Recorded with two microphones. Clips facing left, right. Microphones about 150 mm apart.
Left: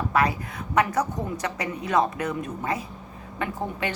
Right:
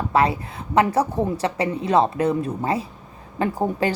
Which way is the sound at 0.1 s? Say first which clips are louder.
Right 5 dB; 25° right (ahead or behind).